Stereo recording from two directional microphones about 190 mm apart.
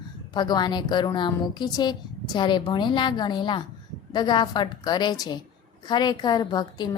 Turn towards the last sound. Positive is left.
turn(degrees=20)  # may be behind; listen again after turning